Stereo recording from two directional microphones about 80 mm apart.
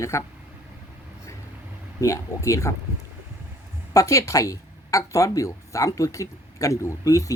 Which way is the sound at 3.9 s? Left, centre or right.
Left.